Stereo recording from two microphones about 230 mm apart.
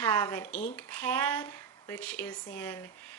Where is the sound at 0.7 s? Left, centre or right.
Centre.